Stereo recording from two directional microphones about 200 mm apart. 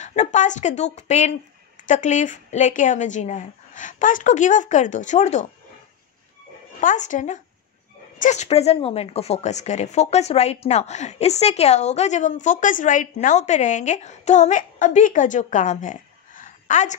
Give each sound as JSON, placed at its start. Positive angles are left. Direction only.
{"t": 0.0, "sound": "a woman's voice", "side_deg": 35}
{"t": 6.8, "sound": "a woman's voice", "side_deg": 40}